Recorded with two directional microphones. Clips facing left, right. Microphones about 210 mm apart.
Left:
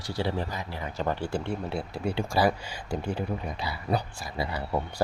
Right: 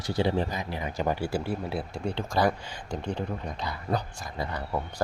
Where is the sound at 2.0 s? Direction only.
10° left (ahead or behind).